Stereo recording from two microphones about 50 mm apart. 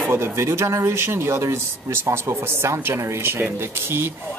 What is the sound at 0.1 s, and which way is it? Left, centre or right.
Speech, right.